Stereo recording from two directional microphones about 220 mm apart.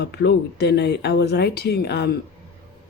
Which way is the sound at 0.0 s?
50° left (ahead or behind).